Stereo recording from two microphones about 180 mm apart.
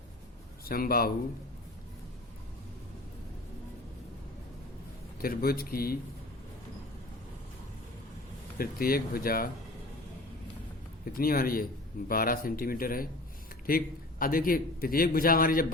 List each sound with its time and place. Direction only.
0.6 s speech: 55° left (ahead or behind)
5.2 s speech: 55° left (ahead or behind)
8.5 s speech: 55° left (ahead or behind)
11.1 s a man's voice: 55° left (ahead or behind)